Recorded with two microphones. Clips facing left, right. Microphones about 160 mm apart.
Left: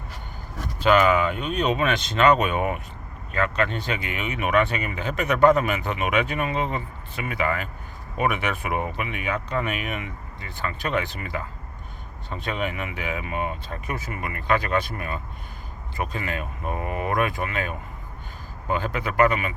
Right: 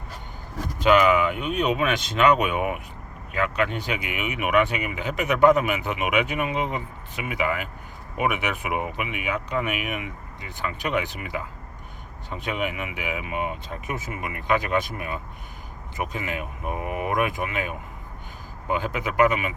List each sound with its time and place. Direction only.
0.8 s speech: 15° right (ahead or behind)